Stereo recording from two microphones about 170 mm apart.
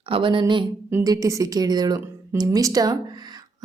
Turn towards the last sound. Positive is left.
turn(degrees=-25)  # may be behind; listen again after turning